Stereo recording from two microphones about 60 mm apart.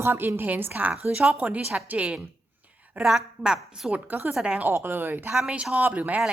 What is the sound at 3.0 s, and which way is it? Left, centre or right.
Speech, centre.